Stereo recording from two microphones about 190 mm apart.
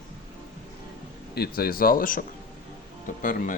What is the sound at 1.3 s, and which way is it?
Speech, 55° left (ahead or behind).